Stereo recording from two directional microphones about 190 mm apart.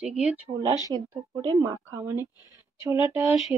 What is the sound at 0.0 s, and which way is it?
Speech, 5° right (ahead or behind).